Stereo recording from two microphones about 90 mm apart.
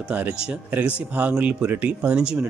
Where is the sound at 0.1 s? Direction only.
20° right (ahead or behind).